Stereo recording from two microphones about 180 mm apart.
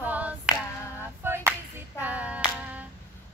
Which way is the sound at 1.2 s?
10° right (ahead or behind).